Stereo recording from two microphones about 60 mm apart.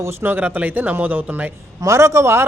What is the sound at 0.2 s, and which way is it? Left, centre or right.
Speech, right.